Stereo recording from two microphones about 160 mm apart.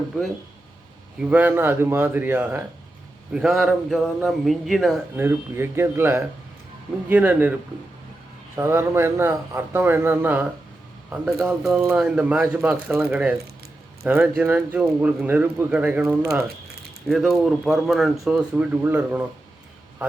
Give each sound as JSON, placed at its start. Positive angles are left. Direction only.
{"t": 1.2, "sound": "speech", "side_deg": -10}
{"t": 5.1, "sound": "speech", "side_deg": -15}
{"t": 8.5, "sound": "speech", "side_deg": -15}
{"t": 11.8, "sound": "speech", "side_deg": -15}
{"t": 17.1, "sound": "speech", "side_deg": 0}